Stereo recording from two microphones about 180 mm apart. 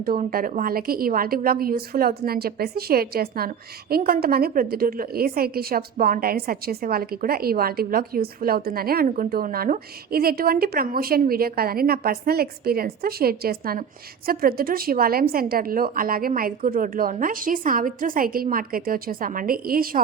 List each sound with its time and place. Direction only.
0.0 s a woman's voice: 55° right (ahead or behind)